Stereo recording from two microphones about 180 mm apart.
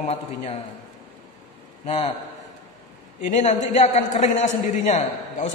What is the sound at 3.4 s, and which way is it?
A woman's voice, 40° left (ahead or behind).